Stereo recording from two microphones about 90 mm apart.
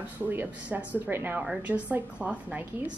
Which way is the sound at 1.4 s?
10° right (ahead or behind).